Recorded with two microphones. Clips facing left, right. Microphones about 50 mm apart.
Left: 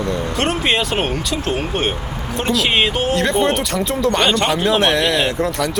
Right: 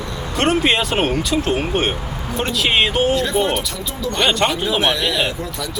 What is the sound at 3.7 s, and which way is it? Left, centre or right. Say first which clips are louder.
Speech: left 8 dB; left.